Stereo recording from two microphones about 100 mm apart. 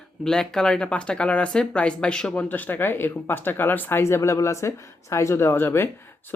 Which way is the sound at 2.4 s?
20° left (ahead or behind).